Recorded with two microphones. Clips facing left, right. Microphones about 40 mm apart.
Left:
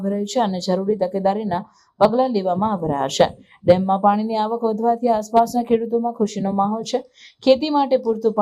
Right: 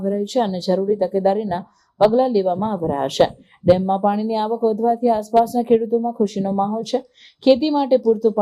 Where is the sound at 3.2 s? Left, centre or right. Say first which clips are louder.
Even; centre.